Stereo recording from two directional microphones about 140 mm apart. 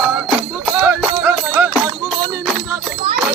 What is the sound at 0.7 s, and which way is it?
Music, 15° right (ahead or behind).